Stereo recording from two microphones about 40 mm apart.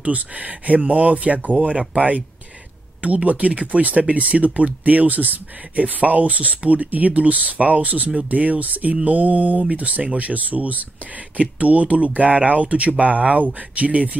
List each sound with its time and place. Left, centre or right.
0.0 s speech: right